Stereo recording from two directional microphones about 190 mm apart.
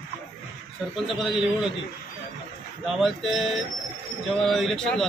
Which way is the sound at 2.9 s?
Centre (ahead or behind).